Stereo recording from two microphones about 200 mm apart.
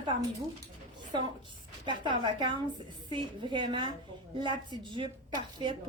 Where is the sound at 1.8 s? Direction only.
25° right (ahead or behind).